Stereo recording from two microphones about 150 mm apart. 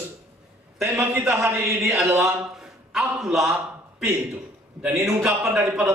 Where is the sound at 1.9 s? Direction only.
5° right (ahead or behind).